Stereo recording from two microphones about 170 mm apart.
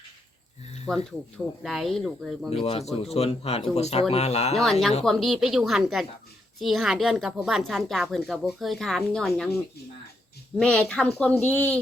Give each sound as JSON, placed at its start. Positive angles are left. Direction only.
{"t": 0.9, "sound": "speech", "side_deg": 5}
{"t": 3.0, "sound": "speech", "side_deg": 35}
{"t": 4.5, "sound": "speech", "side_deg": 0}
{"t": 10.6, "sound": "speech", "side_deg": 5}